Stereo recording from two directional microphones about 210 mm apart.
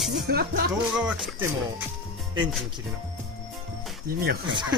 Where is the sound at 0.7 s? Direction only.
5° right (ahead or behind).